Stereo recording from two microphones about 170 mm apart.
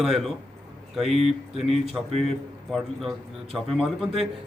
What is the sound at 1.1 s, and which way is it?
Speech, 35° right (ahead or behind).